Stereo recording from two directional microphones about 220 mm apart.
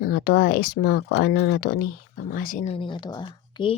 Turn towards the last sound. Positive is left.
turn(degrees=20)  # may be behind; listen again after turning